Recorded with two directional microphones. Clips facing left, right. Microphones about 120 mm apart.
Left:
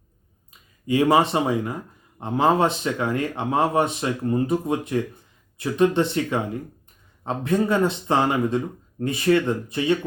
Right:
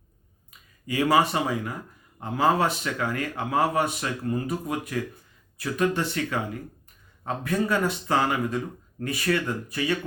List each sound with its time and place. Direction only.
0.9 s a man's voice: 25° left (ahead or behind)